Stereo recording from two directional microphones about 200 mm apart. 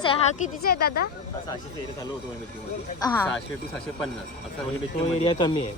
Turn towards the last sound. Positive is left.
turn(degrees=20)  # may be behind; listen again after turning